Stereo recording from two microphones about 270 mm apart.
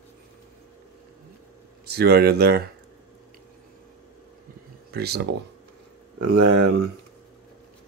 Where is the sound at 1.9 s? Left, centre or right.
Right.